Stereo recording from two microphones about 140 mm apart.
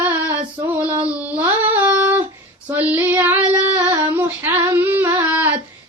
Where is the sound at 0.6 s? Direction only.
15° right (ahead or behind).